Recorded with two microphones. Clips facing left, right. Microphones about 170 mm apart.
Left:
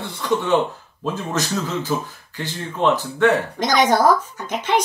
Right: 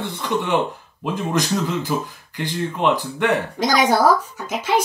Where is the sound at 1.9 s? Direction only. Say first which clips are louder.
Even; 15° right (ahead or behind).